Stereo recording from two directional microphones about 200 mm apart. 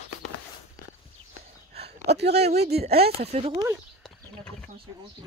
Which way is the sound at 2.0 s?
55° right (ahead or behind).